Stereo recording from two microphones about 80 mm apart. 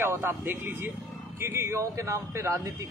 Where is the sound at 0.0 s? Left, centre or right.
Right.